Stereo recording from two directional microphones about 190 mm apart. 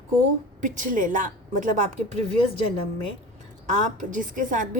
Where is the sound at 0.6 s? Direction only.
40° right (ahead or behind).